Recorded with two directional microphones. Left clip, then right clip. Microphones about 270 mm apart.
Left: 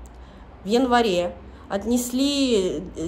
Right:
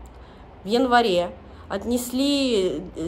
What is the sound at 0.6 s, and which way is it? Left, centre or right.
A woman's voice, centre.